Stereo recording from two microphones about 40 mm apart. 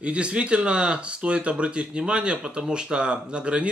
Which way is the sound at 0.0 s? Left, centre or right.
Right.